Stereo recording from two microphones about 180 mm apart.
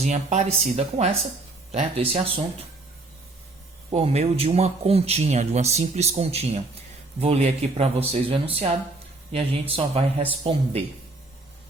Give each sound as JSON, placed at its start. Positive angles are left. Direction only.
{"t": 0.0, "sound": "a man's voice", "side_deg": -40}
{"t": 3.8, "sound": "a man's voice", "side_deg": -35}